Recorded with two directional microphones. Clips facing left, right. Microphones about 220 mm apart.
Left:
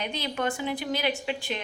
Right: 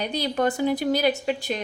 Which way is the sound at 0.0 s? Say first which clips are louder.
Right 6 dB; 35° right (ahead or behind).